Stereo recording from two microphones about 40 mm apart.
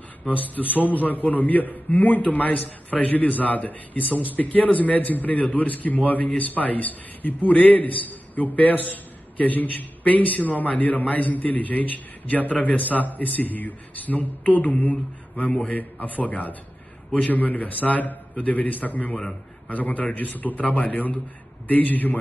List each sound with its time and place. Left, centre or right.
0.3 s a man's voice: left
15.5 s a man's voice: left
16.0 s a man's voice: left